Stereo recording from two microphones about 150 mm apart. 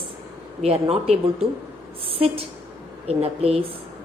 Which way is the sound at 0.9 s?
45° right (ahead or behind).